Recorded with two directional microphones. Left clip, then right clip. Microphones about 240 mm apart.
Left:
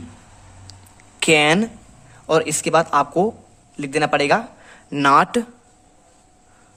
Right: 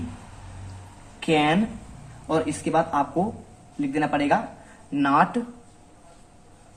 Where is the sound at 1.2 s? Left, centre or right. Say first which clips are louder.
Left 6 dB; left.